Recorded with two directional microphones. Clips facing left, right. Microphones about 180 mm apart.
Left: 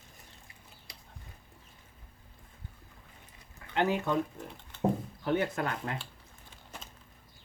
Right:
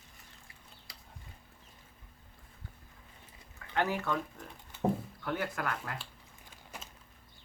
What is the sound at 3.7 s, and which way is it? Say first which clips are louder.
Speech: left 4 dB; 20° left (ahead or behind).